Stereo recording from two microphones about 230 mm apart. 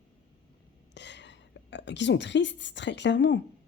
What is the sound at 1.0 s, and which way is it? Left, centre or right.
A woman's voice, left.